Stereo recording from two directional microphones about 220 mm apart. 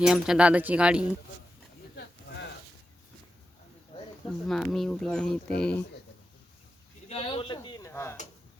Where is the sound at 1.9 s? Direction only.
50° left (ahead or behind).